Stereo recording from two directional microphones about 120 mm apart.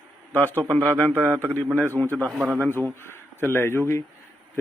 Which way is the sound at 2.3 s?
10° right (ahead or behind).